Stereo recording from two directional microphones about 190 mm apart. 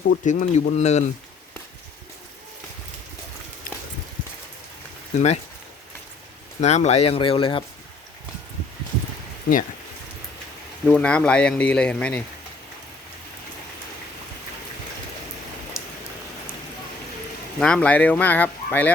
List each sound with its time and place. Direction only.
0.3 s speech: 40° left (ahead or behind)
5.1 s speech: 35° left (ahead or behind)
6.6 s speech: 35° left (ahead or behind)
10.8 s speech: 5° left (ahead or behind)
17.6 s speech: 5° left (ahead or behind)